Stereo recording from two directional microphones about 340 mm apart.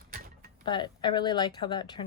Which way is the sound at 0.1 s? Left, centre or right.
Right.